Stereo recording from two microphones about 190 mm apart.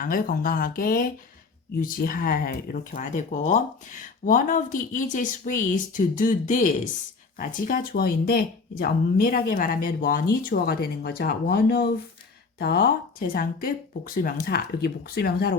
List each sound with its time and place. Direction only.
0.0 s speech: 45° left (ahead or behind)